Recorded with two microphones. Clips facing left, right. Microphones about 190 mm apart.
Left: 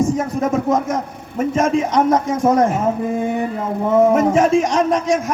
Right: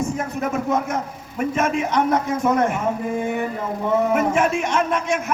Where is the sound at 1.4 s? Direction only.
35° left (ahead or behind).